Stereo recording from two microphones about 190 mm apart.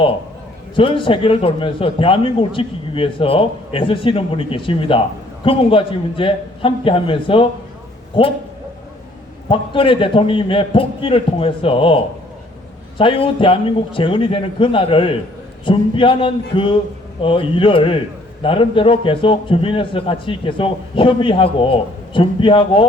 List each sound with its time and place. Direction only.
0.8 s speech: 25° left (ahead or behind)
9.5 s speech: 25° left (ahead or behind)
13.0 s speech: 30° left (ahead or behind)